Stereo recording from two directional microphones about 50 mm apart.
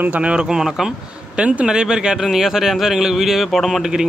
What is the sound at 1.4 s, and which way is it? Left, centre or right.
Speech, right.